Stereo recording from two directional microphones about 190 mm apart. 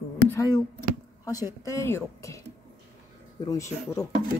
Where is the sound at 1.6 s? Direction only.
15° left (ahead or behind).